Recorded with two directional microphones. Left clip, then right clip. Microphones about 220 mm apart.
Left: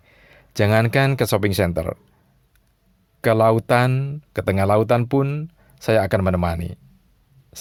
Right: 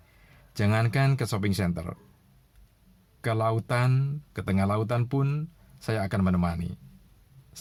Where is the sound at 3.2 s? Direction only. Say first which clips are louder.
Left 12 dB; 45° left (ahead or behind).